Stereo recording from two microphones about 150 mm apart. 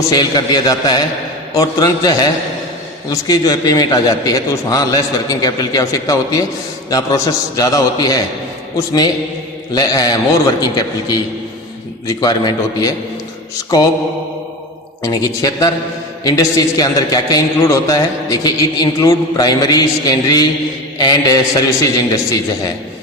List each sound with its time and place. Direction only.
0.1 s a man's voice: 25° left (ahead or behind)
9.7 s a man's voice: 25° left (ahead or behind)
15.0 s a man's voice: 25° left (ahead or behind)